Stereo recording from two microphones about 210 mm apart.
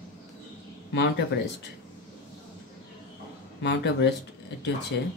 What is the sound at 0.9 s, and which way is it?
Speech, 55° left (ahead or behind).